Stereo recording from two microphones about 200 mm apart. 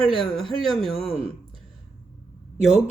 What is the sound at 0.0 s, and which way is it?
Speech, centre (ahead or behind).